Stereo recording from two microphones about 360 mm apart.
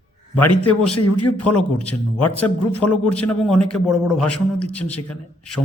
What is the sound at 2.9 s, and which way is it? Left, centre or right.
Mantra, centre.